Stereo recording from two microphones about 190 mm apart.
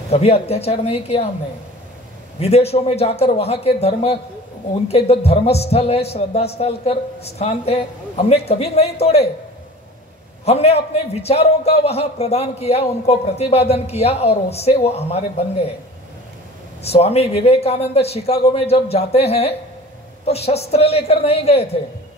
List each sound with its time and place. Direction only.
0.1 s a man's voice: 30° left (ahead or behind)
2.4 s a man's voice: 35° left (ahead or behind)
10.4 s a man's voice: 35° left (ahead or behind)
16.8 s a man's voice: 35° left (ahead or behind)